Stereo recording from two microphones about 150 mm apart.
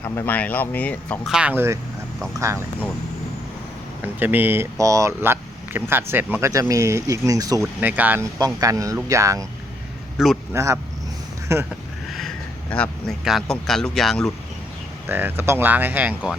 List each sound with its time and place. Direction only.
0.0 s speech: 10° left (ahead or behind)
1.3 s speech: 10° right (ahead or behind)
4.0 s speech: 15° right (ahead or behind)
7.8 s speech: 10° right (ahead or behind)
8.4 s speech: 20° right (ahead or behind)
10.5 s speech: 20° right (ahead or behind)
12.7 s speech: 5° left (ahead or behind)
15.0 s speech: 15° right (ahead or behind)